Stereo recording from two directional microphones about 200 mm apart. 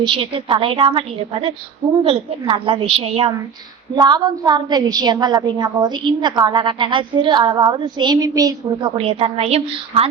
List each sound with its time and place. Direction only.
0.0 s a woman's voice: 25° right (ahead or behind)
9.0 s a woman's voice: 30° right (ahead or behind)